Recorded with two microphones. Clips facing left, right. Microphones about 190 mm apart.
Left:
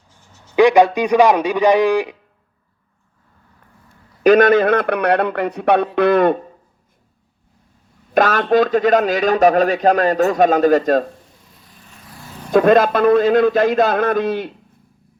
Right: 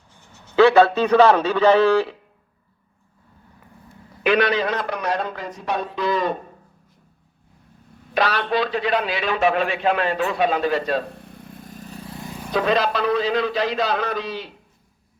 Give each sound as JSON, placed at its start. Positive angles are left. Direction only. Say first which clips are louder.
{"t": 0.1, "sound": "a sound", "louder": "right 1 dB", "side_deg": -60}
{"t": 0.5, "sound": "a man's voice", "louder": "left 2 dB", "side_deg": 15}
{"t": 4.2, "sound": "a man's voice", "louder": "left 8 dB", "side_deg": 45}
{"t": 8.1, "sound": "a man's voice", "louder": "left 7 dB", "side_deg": 45}
{"t": 11.1, "sound": "vehicle", "louder": "right 6 dB", "side_deg": -60}
{"t": 12.5, "sound": "a man's voice", "louder": "left 8 dB", "side_deg": 50}